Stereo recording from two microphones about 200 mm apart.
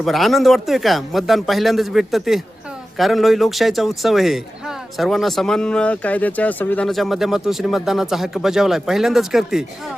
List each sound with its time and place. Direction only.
0.0 s speech: centre (ahead or behind)